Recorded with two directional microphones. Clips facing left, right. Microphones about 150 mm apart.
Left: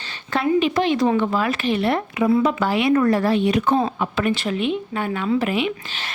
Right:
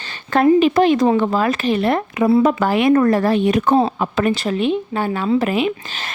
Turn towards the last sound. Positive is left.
turn(degrees=-45)  # may be behind; listen again after turning